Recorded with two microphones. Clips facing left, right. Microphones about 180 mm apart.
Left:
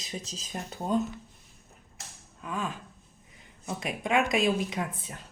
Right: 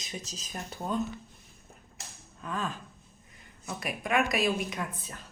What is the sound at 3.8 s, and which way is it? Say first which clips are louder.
A woman's voice: left 2 dB; 25° left (ahead or behind).